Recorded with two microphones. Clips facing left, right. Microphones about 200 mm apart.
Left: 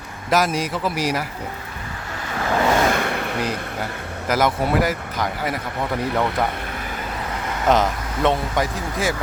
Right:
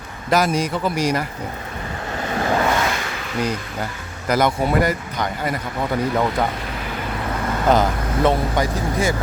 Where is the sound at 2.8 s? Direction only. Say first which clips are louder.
Left 4 dB; 55° left (ahead or behind).